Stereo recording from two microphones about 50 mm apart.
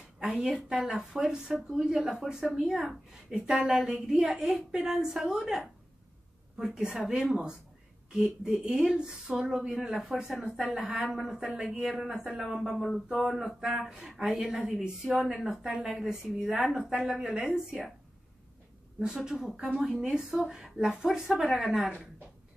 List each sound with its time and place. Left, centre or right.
0.2 s a woman's voice: centre
6.6 s a woman's voice: centre
10.4 s speech: centre
11.0 s a woman's voice: centre
12.8 s speech: centre
13.6 s a woman's voice: centre
18.9 s a woman's voice: centre